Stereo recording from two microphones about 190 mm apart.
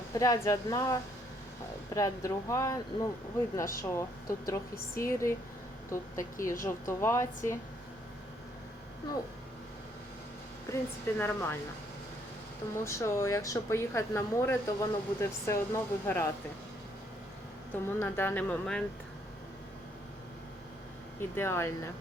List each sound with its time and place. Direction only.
0.1 s a woman's voice: 15° left (ahead or behind)
2.0 s a woman's voice: 15° left (ahead or behind)
10.7 s a woman's voice: 10° left (ahead or behind)
12.7 s a woman's voice: 15° left (ahead or behind)
17.8 s a woman's voice: 10° left (ahead or behind)
21.2 s a woman's voice: 15° left (ahead or behind)